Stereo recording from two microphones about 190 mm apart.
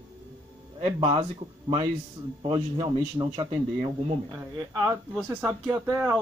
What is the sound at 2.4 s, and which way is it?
A man's voice, 25° right (ahead or behind).